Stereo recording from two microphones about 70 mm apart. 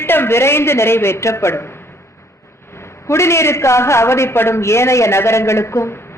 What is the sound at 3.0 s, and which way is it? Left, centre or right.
A man's voice, left.